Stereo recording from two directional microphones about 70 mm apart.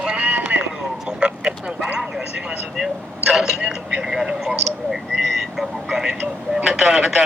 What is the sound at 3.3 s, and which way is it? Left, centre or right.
Speech, centre.